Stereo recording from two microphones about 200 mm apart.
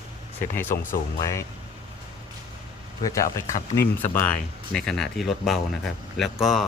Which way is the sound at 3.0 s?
15° left (ahead or behind).